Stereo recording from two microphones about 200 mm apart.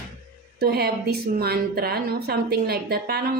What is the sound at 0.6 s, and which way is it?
A woman's voice, 50° right (ahead or behind).